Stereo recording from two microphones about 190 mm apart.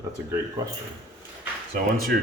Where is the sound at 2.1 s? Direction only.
55° right (ahead or behind).